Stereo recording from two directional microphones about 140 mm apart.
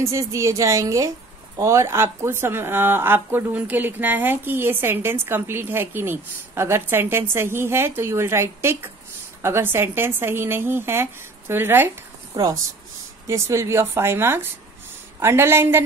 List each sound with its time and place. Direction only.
0.0 s a woman's voice: 20° right (ahead or behind)
12.4 s a woman's voice: 25° right (ahead or behind)